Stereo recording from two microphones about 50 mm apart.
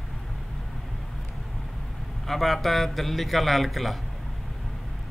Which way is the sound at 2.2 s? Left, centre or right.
Centre.